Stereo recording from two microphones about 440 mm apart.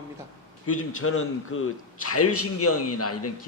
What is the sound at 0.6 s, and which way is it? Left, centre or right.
A man's voice, left.